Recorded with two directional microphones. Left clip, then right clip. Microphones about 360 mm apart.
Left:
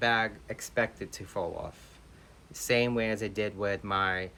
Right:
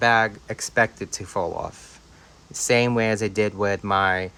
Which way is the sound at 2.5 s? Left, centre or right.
Centre.